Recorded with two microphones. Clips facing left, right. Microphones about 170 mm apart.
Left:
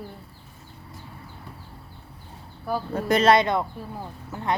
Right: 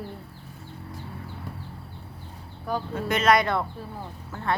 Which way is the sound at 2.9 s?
35° left (ahead or behind).